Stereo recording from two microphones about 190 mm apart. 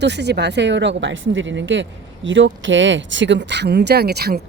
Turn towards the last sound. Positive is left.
turn(degrees=-55)  # may be behind; listen again after turning